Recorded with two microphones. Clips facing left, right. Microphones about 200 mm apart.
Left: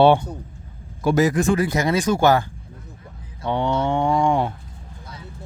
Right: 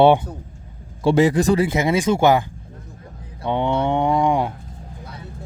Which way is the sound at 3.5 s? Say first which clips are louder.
Right 1 dB; 20° right (ahead or behind).